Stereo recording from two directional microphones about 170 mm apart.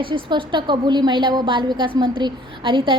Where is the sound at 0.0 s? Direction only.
30° right (ahead or behind).